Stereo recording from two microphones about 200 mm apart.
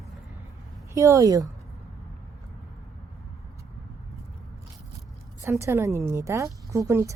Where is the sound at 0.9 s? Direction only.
15° right (ahead or behind).